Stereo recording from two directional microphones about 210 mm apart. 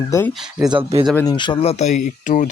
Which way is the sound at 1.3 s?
20° left (ahead or behind).